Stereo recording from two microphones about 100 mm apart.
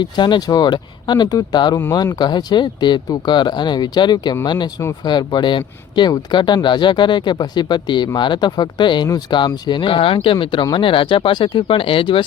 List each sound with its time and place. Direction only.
0.0 s speech: 50° left (ahead or behind); by 10.3 s 65° left (ahead or behind)
10.3 s speech: 55° left (ahead or behind)